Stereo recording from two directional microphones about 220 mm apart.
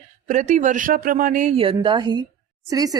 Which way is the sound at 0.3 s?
35° right (ahead or behind).